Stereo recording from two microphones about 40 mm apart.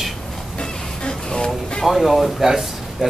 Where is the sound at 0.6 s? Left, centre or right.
Centre.